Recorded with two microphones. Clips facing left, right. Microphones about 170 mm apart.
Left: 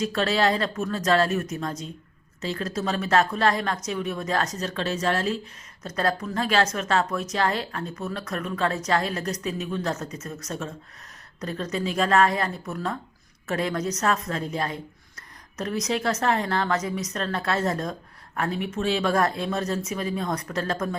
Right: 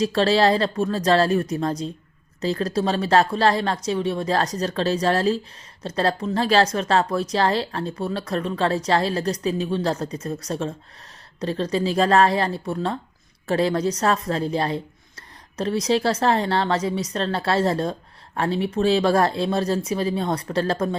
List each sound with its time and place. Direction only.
0.0 s speech: 30° right (ahead or behind)